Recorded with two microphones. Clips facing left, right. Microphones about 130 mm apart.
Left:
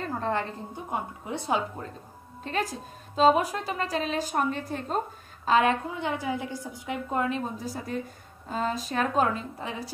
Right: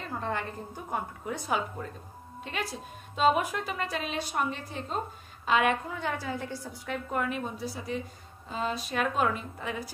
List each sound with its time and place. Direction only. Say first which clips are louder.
0.2 s a woman's voice: left 4 dB; 30° left (ahead or behind)
0.8 s a woman's voice: left 1 dB; 20° left (ahead or behind)
2.4 s a woman's voice: left 5 dB; 40° left (ahead or behind)
7.5 s a woman's voice: left 2 dB; 45° left (ahead or behind); by 9.9 s 30° left (ahead or behind)